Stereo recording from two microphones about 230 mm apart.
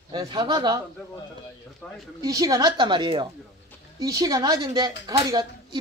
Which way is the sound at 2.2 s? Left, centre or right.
Centre.